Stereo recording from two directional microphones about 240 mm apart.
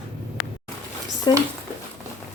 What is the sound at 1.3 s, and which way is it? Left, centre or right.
Speech, centre.